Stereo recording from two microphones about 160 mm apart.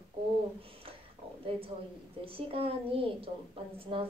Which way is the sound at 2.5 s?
35° right (ahead or behind).